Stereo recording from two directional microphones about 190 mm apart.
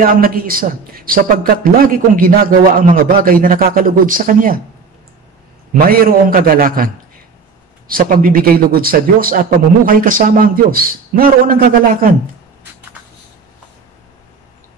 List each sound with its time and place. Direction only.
0.0 s speech: 50° right (ahead or behind)
5.7 s speech: 50° right (ahead or behind)
7.9 s speech: 50° right (ahead or behind)